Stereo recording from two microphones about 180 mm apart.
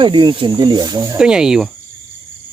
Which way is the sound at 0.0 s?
25° right (ahead or behind).